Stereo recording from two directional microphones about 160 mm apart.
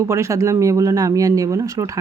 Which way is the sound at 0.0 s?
20° right (ahead or behind).